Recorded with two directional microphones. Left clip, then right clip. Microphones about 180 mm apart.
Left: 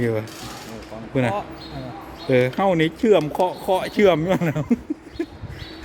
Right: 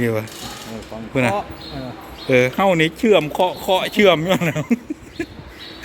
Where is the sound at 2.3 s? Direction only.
10° left (ahead or behind).